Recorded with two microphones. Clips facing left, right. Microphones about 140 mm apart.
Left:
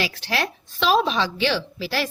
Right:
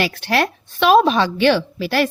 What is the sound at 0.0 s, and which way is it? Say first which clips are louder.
A woman's voice: right 7 dB; 55° right (ahead or behind).